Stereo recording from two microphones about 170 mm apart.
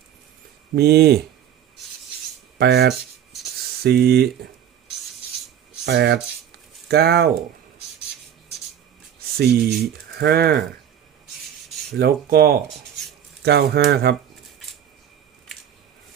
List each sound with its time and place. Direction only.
0.8 s speech: 70° right (ahead or behind)
2.6 s speech: 80° right
5.8 s speech: 75° right (ahead or behind)
9.4 s speech: 75° right (ahead or behind)
11.9 s speech: 65° right (ahead or behind)